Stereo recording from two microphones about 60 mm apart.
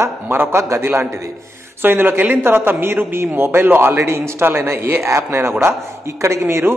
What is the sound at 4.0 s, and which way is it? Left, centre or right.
A man's voice, right.